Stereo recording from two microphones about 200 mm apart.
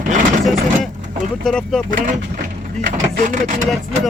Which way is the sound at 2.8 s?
40° right (ahead or behind).